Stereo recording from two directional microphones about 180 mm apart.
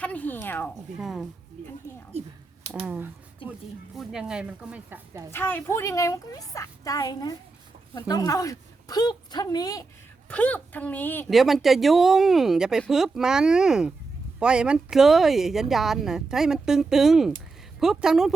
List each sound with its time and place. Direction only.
0.0 s a woman's voice: 10° left (ahead or behind)
0.9 s speech: centre (ahead or behind)
2.1 s speech: 35° right (ahead or behind)
2.8 s speech: 10° right (ahead or behind)
5.3 s a woman's voice: 10° left (ahead or behind)
10.2 s a woman's voice: 10° left (ahead or behind)
11.3 s speech: centre (ahead or behind)